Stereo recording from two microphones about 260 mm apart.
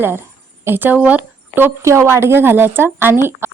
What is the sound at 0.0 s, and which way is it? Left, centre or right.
A woman's voice, centre.